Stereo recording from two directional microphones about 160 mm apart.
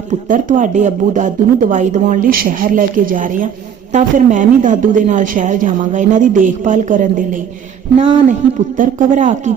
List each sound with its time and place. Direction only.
0.1 s a woman's voice: 55° right (ahead or behind)
8.3 s a woman's voice: 50° right (ahead or behind)